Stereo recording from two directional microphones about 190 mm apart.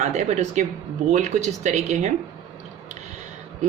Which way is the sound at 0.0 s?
40° right (ahead or behind).